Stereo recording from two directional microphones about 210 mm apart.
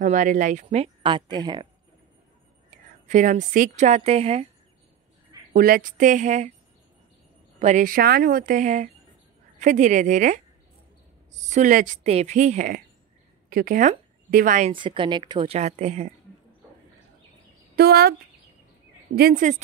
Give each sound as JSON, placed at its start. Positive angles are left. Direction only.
{"t": 0.0, "sound": "speech", "side_deg": -35}
{"t": 3.1, "sound": "speech", "side_deg": -35}
{"t": 5.5, "sound": "speech", "side_deg": -40}
{"t": 7.5, "sound": "speech", "side_deg": -35}
{"t": 14.7, "sound": "a woman's voice", "side_deg": -25}
{"t": 17.7, "sound": "speech", "side_deg": -50}
{"t": 19.1, "sound": "speech", "side_deg": -45}